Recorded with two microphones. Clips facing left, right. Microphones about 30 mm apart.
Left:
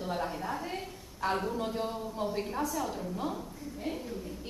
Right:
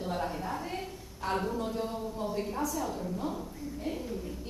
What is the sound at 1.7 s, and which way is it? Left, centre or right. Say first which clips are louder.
A woman's voice: even; centre.